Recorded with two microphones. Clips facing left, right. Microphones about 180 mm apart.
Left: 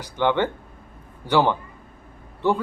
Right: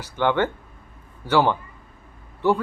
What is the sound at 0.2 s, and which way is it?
Speech, 15° left (ahead or behind).